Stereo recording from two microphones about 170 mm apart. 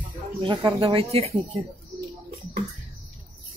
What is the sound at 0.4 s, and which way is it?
Speech, 30° right (ahead or behind).